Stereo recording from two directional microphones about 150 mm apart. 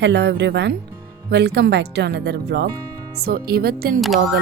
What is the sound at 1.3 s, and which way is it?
Speech, 90° right.